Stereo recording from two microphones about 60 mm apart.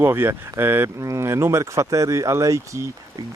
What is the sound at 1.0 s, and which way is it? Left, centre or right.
Speech, right.